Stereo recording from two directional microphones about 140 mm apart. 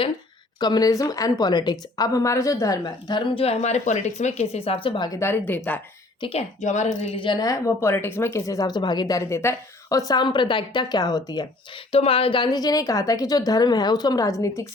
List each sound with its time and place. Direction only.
0.6 s speech: 30° left (ahead or behind)
5.2 s speech: 15° left (ahead or behind)
6.1 s speech: 40° left (ahead or behind)
6.6 s a woman's voice: 55° left (ahead or behind)
7.2 s speech: 30° left (ahead or behind)
10.1 s a woman's voice: 30° left (ahead or behind)
11.9 s speech: 40° left (ahead or behind); by 14.7 s 20° left (ahead or behind)